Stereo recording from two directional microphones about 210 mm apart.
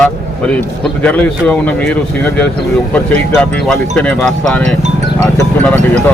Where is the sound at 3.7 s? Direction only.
5° left (ahead or behind).